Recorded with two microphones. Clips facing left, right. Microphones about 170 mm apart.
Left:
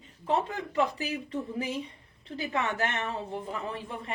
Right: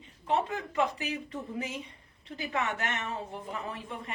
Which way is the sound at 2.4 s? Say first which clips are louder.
Left 3 dB; 30° left (ahead or behind).